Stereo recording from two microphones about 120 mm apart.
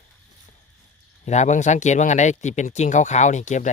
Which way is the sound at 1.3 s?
80° left.